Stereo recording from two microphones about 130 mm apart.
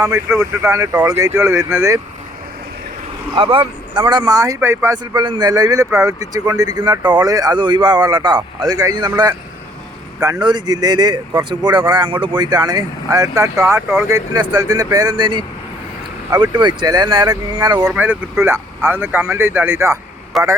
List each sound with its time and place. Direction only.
0.0 s speech: 20° right (ahead or behind)
3.3 s speech: 40° right (ahead or behind); by 4.9 s 20° right (ahead or behind)
5.1 s speech: 35° right (ahead or behind)
14.3 s speech: 30° right (ahead or behind)
17.9 s speech: 10° right (ahead or behind)
20.3 s speech: centre (ahead or behind)